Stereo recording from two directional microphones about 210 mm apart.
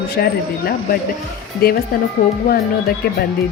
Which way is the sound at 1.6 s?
45° left (ahead or behind).